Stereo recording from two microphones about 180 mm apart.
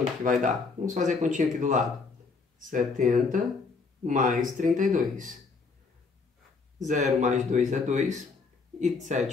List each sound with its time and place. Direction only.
0.2 s speech: 45° right (ahead or behind)
6.8 s speech: 45° right (ahead or behind)